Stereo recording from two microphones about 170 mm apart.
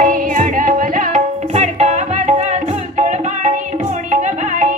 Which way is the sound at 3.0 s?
45° right (ahead or behind).